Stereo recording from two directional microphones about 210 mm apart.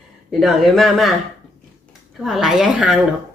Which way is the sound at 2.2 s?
Centre (ahead or behind).